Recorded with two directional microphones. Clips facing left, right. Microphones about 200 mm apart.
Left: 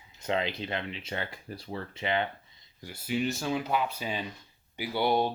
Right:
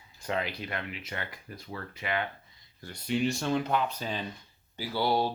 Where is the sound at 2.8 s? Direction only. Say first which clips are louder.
Right 1 dB; 5° left (ahead or behind).